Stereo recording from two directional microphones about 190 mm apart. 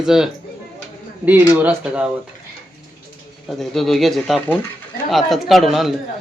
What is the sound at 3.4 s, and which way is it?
A man's voice, centre (ahead or behind).